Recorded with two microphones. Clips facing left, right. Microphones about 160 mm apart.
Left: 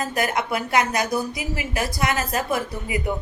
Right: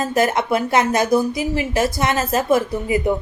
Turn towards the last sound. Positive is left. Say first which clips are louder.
# right 8 dB
turn(degrees=-30)  # may be behind; listen again after turning